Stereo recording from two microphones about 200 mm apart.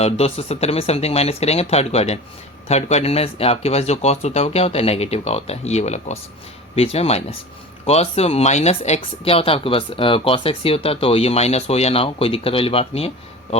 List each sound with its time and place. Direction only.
0.0 s speech: 30° left (ahead or behind)